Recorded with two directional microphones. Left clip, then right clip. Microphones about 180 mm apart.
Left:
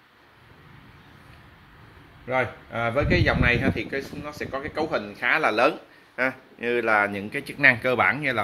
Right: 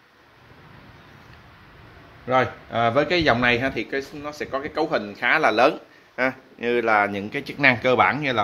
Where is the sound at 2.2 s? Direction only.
20° right (ahead or behind).